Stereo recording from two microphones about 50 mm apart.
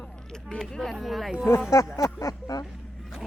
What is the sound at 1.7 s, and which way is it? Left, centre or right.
Speech, left.